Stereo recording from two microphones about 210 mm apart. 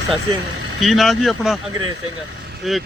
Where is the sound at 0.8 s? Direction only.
Centre (ahead or behind).